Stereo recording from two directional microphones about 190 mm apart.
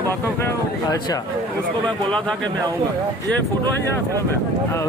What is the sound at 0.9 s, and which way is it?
Speech, 20° left (ahead or behind).